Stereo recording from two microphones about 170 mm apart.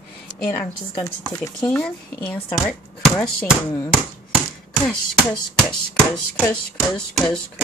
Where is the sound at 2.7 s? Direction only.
5° left (ahead or behind).